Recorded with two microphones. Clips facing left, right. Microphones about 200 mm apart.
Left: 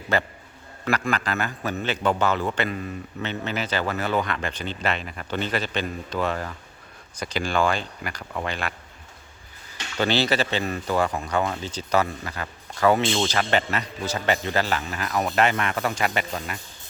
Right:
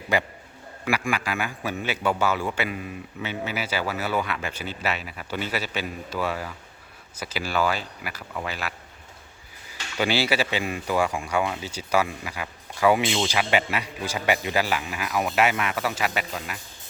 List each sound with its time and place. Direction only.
0.1 s speech: 15° right (ahead or behind)
10.0 s speech: 10° right (ahead or behind)